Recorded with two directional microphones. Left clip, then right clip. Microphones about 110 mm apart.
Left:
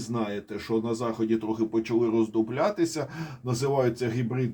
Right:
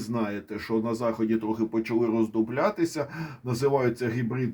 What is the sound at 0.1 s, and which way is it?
Speech, 45° right (ahead or behind).